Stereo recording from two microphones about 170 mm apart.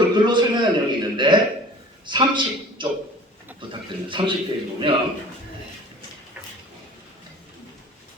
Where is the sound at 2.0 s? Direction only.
25° right (ahead or behind).